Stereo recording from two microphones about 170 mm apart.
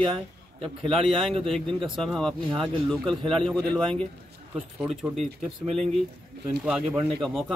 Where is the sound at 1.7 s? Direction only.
30° right (ahead or behind).